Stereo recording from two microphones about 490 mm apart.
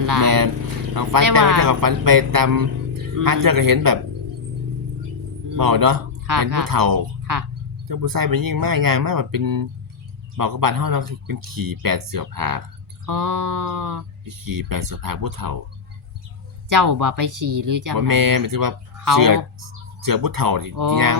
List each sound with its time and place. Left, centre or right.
0.0 s a man's voice: right
5.5 s a man's voice: right
16.6 s a man's voice: right